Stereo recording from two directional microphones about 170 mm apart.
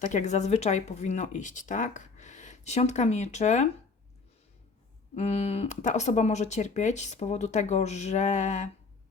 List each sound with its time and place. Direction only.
0.0 s speech: 45° left (ahead or behind)
5.1 s speech: 35° left (ahead or behind)